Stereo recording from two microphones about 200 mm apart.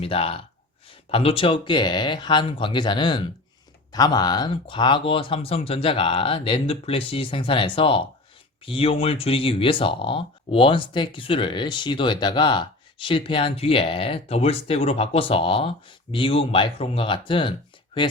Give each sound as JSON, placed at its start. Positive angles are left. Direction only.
{"t": 0.0, "sound": "speech", "side_deg": 30}